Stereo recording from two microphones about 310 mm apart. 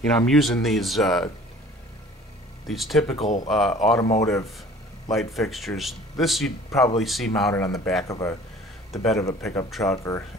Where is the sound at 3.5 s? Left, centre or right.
Centre.